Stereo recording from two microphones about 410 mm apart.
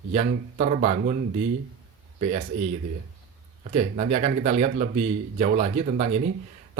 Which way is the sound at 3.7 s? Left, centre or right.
Centre.